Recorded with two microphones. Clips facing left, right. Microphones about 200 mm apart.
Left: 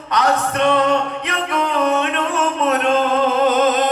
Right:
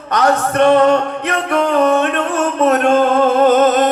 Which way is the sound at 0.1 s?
50° right (ahead or behind).